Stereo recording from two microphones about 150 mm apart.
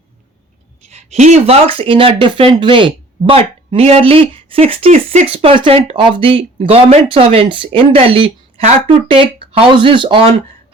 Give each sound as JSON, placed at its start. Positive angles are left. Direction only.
{"t": 0.9, "sound": "speech", "side_deg": -50}